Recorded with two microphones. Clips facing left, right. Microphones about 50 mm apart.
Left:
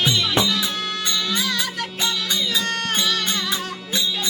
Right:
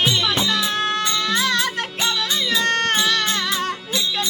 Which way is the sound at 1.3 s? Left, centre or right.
Right.